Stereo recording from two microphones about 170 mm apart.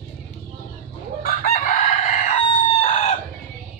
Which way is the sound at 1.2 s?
55° left (ahead or behind).